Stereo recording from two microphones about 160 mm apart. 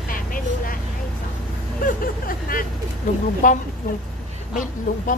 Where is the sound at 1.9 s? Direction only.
60° left (ahead or behind).